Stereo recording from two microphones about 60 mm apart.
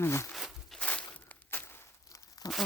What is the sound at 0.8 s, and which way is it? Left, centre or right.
Walk, left.